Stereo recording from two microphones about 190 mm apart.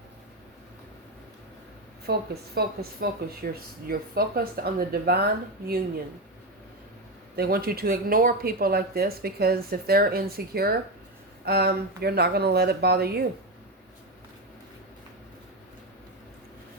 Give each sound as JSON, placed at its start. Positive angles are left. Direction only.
{"t": 2.0, "sound": "speech", "side_deg": -55}
{"t": 7.3, "sound": "speech", "side_deg": -55}